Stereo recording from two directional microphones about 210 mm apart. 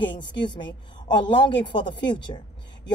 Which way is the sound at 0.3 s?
20° left (ahead or behind).